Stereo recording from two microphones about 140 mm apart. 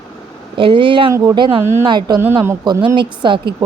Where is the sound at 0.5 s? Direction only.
35° right (ahead or behind).